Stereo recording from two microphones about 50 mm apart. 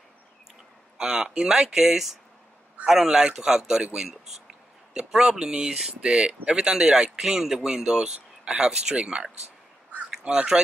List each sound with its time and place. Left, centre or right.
0.9 s speech: centre